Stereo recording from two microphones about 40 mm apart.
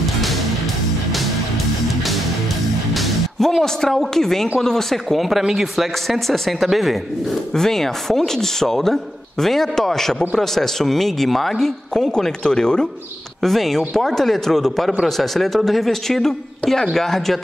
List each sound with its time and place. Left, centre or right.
0.0 s music: centre
2.0 s music: centre
4.6 s a man's voice: centre
6.0 s a man's voice: centre
11.9 s a man's voice: centre
13.4 s a man's voice: centre